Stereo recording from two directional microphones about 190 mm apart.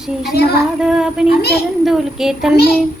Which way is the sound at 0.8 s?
5° right (ahead or behind).